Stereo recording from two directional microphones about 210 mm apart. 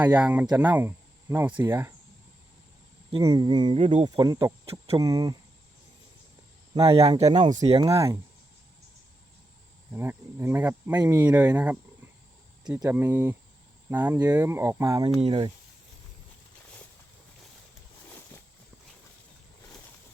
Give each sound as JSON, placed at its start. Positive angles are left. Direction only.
{"t": 0.0, "sound": "speech", "side_deg": -5}
{"t": 3.1, "sound": "speech", "side_deg": -20}
{"t": 7.2, "sound": "speech", "side_deg": -25}
{"t": 9.9, "sound": "speech", "side_deg": -10}